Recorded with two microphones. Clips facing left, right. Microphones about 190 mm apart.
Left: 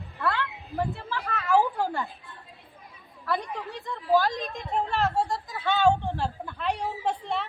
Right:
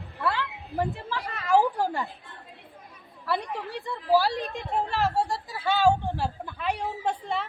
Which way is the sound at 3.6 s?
35° right (ahead or behind).